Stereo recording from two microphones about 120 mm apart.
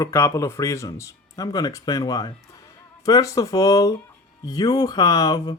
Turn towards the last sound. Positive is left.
turn(degrees=35)  # may be behind; listen again after turning